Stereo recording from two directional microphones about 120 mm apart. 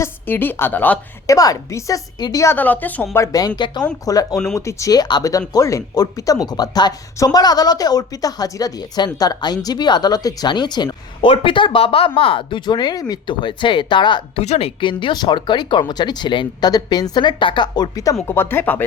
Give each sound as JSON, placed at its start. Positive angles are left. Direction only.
{"t": 0.0, "sound": "a woman's voice", "side_deg": 15}
{"t": 1.3, "sound": "a woman's voice", "side_deg": 30}
{"t": 2.6, "sound": "a woman's voice", "side_deg": 15}
{"t": 3.2, "sound": "a woman's voice", "side_deg": 30}
{"t": 14.4, "sound": "a woman's voice", "side_deg": 65}
{"t": 14.8, "sound": "speech", "side_deg": 45}
{"t": 18.3, "sound": "a woman's voice", "side_deg": 20}